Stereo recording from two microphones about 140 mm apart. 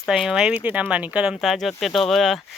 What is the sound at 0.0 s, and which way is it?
Speech, centre (ahead or behind).